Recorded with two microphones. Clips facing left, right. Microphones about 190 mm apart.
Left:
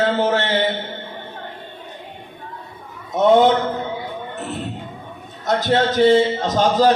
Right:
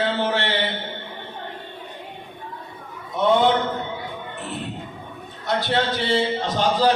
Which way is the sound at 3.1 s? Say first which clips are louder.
Left 5 dB; 45° left (ahead or behind).